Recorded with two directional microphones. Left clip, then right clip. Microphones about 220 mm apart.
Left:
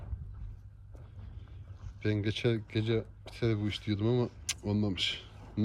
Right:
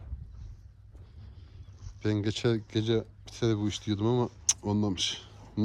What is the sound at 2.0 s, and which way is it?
Speech, 15° right (ahead or behind).